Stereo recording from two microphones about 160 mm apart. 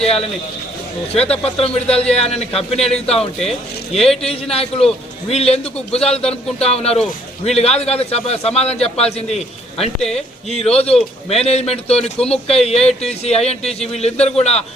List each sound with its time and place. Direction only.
0.0 s a man's voice: 40° left (ahead or behind)